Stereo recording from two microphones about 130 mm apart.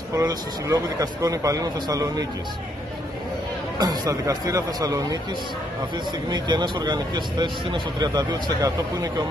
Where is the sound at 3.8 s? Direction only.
30° right (ahead or behind).